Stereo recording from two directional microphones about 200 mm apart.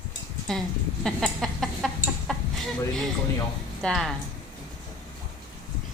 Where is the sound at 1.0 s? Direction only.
Centre (ahead or behind).